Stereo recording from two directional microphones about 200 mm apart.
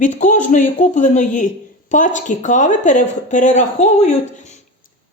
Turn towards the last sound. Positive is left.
turn(degrees=35)  # may be behind; listen again after turning